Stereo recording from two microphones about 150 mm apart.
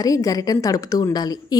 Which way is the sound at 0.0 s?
25° left (ahead or behind).